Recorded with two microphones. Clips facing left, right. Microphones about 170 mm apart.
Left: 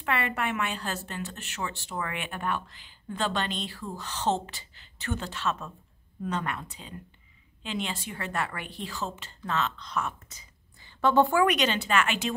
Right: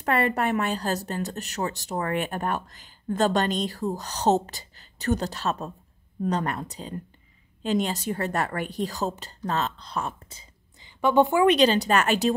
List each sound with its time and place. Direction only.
0.0 s a woman's voice: 40° right (ahead or behind)
10.8 s a woman's voice: 15° right (ahead or behind)
11.5 s a woman's voice: 35° right (ahead or behind)